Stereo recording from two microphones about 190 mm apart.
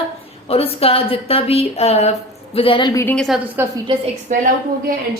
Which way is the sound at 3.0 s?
5° left (ahead or behind).